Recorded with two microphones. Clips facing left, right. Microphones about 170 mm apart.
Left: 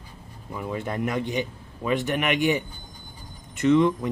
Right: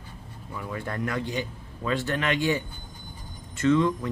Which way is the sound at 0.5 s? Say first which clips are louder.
Left 4 dB; 20° left (ahead or behind).